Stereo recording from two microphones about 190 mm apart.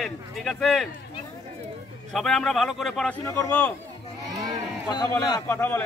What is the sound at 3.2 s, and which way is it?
Speech, 15° left (ahead or behind).